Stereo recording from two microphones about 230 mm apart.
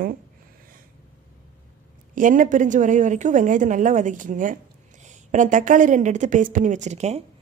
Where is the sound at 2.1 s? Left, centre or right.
Right.